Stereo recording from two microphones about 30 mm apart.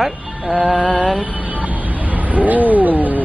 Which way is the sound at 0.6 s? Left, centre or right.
Right.